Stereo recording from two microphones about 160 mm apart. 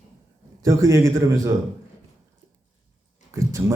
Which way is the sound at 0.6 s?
20° right (ahead or behind).